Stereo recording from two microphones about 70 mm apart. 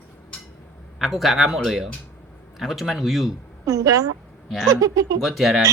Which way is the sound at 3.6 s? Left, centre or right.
Right.